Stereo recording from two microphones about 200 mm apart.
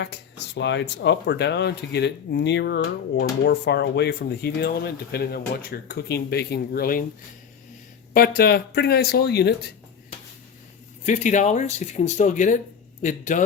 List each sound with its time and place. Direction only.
0.0 s speech: 60° left (ahead or behind)
8.1 s speech: 50° left (ahead or behind)
11.0 s speech: 35° left (ahead or behind)